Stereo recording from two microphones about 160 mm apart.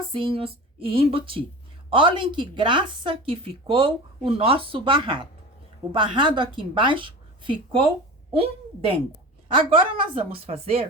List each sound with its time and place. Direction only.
0.1 s a woman's voice: 35° right (ahead or behind)
9.6 s a woman's voice: 30° right (ahead or behind)